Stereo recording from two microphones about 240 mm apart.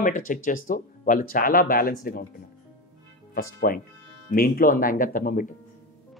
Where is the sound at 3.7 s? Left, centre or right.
Left.